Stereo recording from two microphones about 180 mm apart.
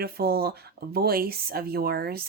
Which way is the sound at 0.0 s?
60° right (ahead or behind).